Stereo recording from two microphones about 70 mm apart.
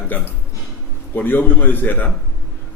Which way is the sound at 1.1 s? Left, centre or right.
Left.